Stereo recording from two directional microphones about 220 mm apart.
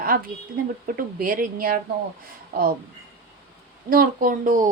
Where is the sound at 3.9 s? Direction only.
40° right (ahead or behind).